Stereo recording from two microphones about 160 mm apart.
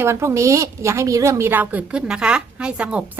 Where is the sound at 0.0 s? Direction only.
15° right (ahead or behind).